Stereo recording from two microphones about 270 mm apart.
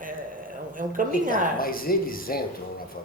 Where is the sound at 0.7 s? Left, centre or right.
Right.